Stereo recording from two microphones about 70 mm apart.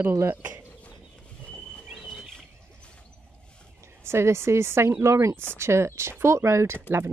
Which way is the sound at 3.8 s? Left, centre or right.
Right.